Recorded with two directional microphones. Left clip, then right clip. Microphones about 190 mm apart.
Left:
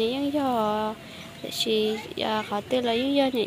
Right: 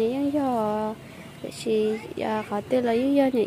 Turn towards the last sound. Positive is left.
turn(degrees=-20)  # may be behind; listen again after turning